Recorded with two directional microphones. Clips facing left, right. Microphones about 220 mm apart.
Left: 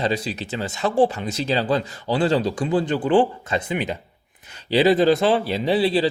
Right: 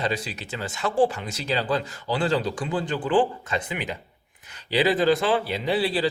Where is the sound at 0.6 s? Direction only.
20° left (ahead or behind).